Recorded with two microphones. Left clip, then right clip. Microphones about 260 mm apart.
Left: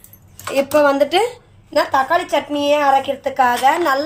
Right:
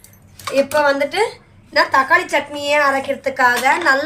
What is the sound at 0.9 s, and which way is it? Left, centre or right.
A woman's voice, left.